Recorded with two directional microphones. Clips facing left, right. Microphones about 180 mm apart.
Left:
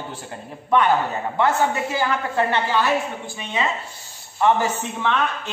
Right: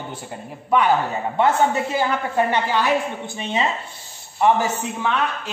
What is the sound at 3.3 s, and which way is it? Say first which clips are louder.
Speech: right 2 dB; 30° right (ahead or behind).